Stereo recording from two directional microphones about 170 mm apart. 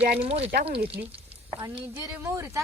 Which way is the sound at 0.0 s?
35° right (ahead or behind).